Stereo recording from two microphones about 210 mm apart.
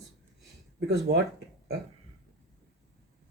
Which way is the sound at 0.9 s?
55° right (ahead or behind).